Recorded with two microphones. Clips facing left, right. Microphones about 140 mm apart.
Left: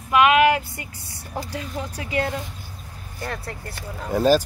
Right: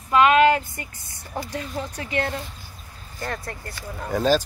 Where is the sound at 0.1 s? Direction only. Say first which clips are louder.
Even; 10° left (ahead or behind).